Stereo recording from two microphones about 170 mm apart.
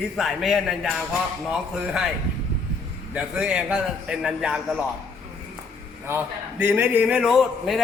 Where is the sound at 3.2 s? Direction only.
5° right (ahead or behind).